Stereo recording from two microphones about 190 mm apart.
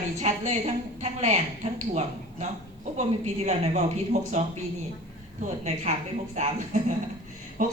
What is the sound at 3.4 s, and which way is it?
Speech, 35° right (ahead or behind).